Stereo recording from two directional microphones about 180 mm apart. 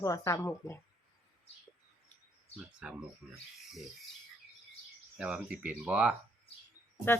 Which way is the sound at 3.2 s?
Centre (ahead or behind).